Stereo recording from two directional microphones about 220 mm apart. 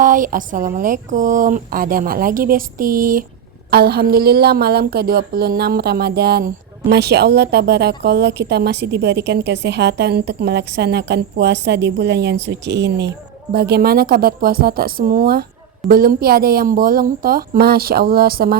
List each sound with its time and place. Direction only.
0.0 s a woman's voice: 35° right (ahead or behind)